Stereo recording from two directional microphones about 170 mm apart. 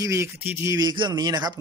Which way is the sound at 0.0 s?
15° right (ahead or behind).